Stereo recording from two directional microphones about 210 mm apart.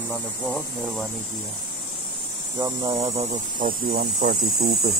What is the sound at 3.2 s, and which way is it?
Speech, 40° right (ahead or behind).